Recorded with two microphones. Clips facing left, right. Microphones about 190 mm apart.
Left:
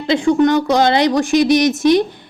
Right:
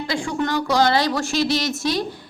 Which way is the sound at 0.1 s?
20° left (ahead or behind).